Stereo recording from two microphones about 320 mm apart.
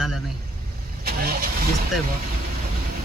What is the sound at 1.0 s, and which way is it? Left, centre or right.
Speech, right.